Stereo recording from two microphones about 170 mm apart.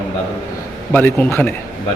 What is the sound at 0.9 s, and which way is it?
Speech, 10° left (ahead or behind).